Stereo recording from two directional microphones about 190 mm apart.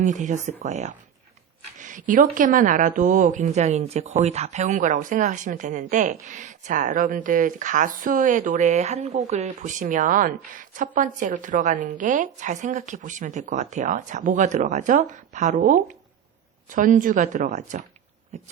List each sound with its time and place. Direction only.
0.0 s speech: 40° right (ahead or behind)